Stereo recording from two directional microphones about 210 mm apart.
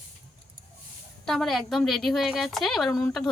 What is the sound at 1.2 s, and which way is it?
A woman's voice, centre (ahead or behind).